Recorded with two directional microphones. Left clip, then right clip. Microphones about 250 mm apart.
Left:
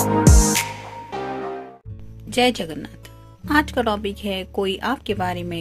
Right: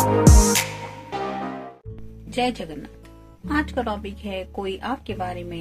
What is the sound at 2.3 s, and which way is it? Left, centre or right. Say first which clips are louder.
Speech: left 5 dB; left.